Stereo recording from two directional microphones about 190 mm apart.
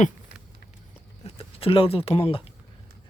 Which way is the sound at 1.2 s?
30° left (ahead or behind).